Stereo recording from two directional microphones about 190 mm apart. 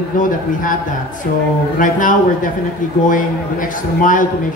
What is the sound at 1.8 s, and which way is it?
A man's voice, 45° left (ahead or behind).